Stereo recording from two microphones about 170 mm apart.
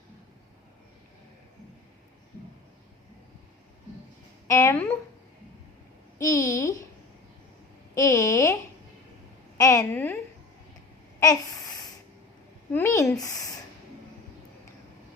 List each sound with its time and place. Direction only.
4.4 s speech: 20° left (ahead or behind)
6.1 s a woman's voice: 20° left (ahead or behind)
7.9 s a woman's voice: 20° left (ahead or behind)
9.6 s speech: 20° left (ahead or behind)
11.2 s a sound: 20° left (ahead or behind)
12.7 s speech: 15° left (ahead or behind)